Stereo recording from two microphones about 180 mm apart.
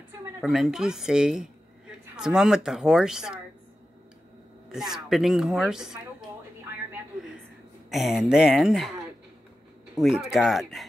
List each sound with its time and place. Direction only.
0.4 s a woman's voice: centre (ahead or behind)
4.7 s speech: centre (ahead or behind)
7.9 s speech: centre (ahead or behind)
9.9 s speech: 5° right (ahead or behind)